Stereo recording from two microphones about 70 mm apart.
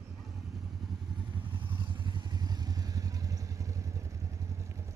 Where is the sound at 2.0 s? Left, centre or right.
Right.